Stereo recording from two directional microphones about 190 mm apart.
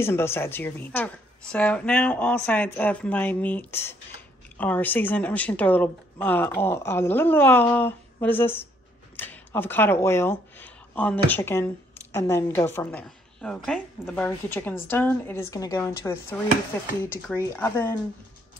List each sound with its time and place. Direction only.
0.0 s a woman's voice: 10° left (ahead or behind)
7.7 s a sound: 10° left (ahead or behind)
9.1 s a woman's voice: 10° left (ahead or behind)
17.6 s a woman's voice: 10° left (ahead or behind)